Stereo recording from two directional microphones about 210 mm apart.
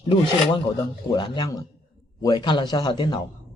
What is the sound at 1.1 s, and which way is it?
Speech, 20° left (ahead or behind).